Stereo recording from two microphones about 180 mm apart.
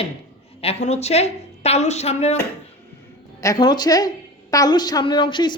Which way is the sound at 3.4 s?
20° left (ahead or behind).